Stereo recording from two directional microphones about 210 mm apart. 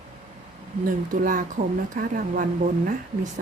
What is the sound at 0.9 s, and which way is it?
Speech, 40° right (ahead or behind).